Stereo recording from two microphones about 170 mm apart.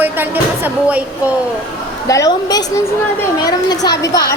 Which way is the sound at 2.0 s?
20° left (ahead or behind).